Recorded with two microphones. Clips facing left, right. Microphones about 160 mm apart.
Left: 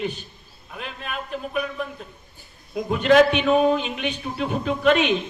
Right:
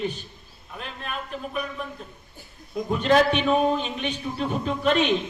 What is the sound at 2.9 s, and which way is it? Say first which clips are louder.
A man's voice: left 4 dB; 35° right (ahead or behind).